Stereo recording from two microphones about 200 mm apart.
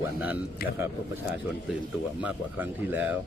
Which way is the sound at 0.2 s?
10° right (ahead or behind).